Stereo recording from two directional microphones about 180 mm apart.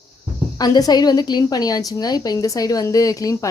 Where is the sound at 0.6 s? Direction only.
20° left (ahead or behind).